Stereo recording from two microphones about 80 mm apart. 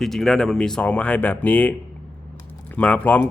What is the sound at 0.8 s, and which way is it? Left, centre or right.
A man's voice, centre.